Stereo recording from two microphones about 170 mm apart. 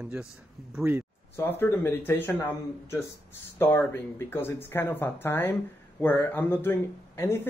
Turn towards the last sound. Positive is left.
turn(degrees=15)  # may be behind; listen again after turning